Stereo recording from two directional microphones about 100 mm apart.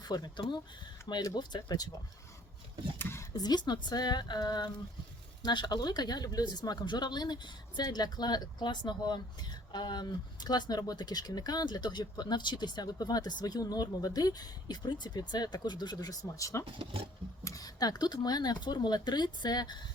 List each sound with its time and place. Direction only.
0.0 s speech: 40° left (ahead or behind)
3.0 s a sound: 25° left (ahead or behind)
3.3 s speech: 45° left (ahead or behind)
16.6 s speech: 65° right (ahead or behind)
17.4 s speech: 35° left (ahead or behind)